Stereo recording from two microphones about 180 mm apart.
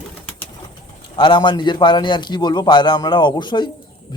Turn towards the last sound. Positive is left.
turn(degrees=25)  # may be behind; listen again after turning